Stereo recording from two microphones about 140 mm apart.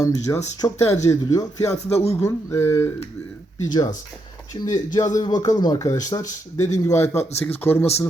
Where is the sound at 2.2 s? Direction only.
20° left (ahead or behind).